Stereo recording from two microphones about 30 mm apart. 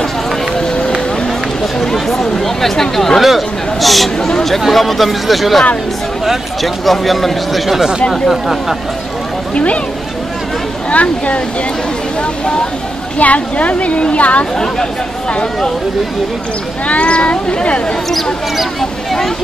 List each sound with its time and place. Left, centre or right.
1.8 s a sound: centre
3.2 s speech: centre
6.6 s speech: centre
10.9 s speech: left
13.2 s speech: left
16.8 s speech: left